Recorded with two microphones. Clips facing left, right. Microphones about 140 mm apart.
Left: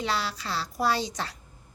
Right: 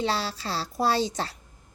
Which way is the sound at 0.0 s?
30° right (ahead or behind).